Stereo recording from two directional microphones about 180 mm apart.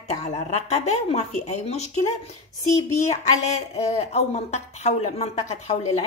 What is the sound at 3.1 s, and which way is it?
Speech, 40° left (ahead or behind).